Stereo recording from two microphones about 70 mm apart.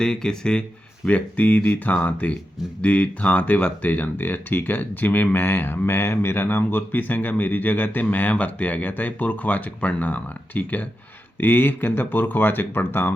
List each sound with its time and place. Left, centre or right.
0.0 s speech: centre
1.0 s speech: left